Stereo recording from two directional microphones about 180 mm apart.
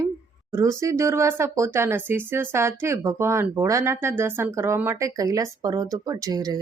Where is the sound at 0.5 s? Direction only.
15° right (ahead or behind).